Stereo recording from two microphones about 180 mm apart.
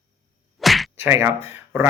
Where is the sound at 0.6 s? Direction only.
Centre (ahead or behind).